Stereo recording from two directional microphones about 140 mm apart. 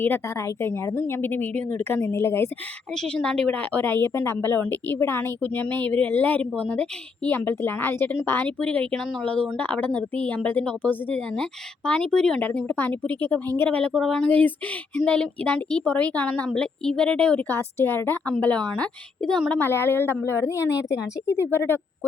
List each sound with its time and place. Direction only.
0.0 s a woman's voice: 20° left (ahead or behind)
2.9 s a woman's voice: 5° left (ahead or behind)